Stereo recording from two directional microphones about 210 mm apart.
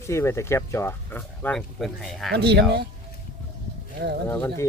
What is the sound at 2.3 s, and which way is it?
Speech, 50° right (ahead or behind).